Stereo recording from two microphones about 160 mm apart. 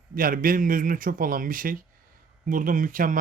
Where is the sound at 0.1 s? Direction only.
60° right (ahead or behind).